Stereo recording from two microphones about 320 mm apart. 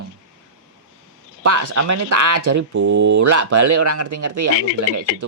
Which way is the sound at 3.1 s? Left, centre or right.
Right.